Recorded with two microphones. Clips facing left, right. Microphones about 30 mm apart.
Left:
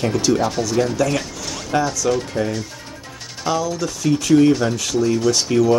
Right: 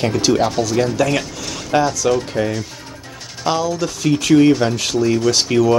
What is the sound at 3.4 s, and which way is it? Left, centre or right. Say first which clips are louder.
Speech: right 2 dB; right.